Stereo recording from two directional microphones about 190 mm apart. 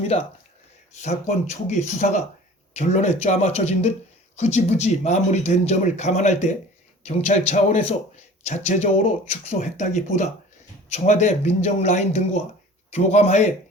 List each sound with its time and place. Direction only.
0.1 s a man's voice: 35° left (ahead or behind)
1.6 s a man's voice: 40° left (ahead or behind)